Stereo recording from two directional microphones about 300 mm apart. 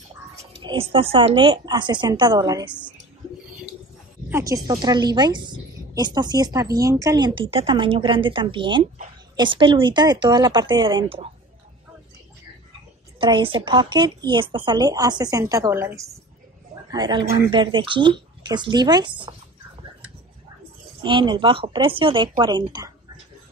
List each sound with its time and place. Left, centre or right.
0.6 s speech: centre
4.3 s speech: centre
13.2 s speech: centre
21.0 s speech: centre